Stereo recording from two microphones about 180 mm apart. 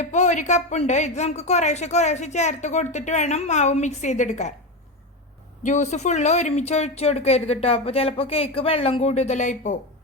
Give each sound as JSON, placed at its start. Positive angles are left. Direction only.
{"t": 0.0, "sound": "a woman's voice", "side_deg": 40}
{"t": 5.6, "sound": "a woman's voice", "side_deg": 40}